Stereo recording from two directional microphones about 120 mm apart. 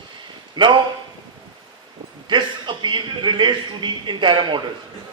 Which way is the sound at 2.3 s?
40° right (ahead or behind).